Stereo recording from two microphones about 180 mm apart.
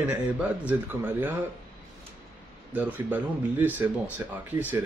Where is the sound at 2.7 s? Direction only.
10° right (ahead or behind).